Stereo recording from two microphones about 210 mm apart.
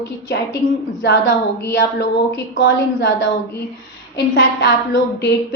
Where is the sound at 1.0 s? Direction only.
60° left (ahead or behind).